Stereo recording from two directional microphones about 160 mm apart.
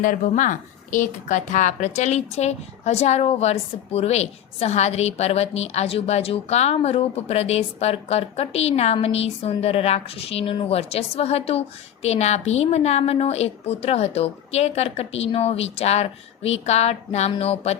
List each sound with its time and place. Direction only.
0.0 s a woman's voice: 55° left (ahead or behind)